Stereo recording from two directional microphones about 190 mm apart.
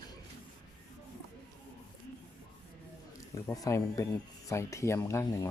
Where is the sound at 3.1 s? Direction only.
15° left (ahead or behind).